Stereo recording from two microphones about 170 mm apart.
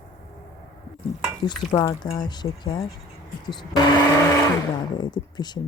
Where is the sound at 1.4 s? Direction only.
25° left (ahead or behind).